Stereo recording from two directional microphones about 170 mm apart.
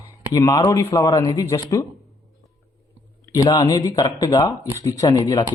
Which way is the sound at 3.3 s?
20° left (ahead or behind).